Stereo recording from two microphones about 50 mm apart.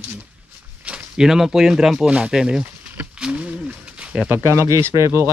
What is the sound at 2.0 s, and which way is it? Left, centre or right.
Speech, right.